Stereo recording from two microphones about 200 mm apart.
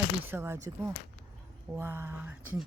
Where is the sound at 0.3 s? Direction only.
15° right (ahead or behind).